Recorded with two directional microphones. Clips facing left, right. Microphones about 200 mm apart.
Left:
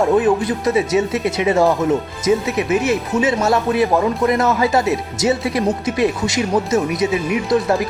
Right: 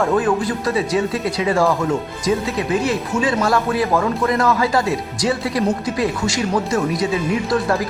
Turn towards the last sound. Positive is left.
turn(degrees=20)  # may be behind; listen again after turning